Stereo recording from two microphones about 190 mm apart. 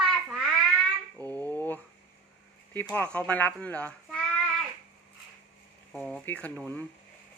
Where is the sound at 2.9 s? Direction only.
5° left (ahead or behind).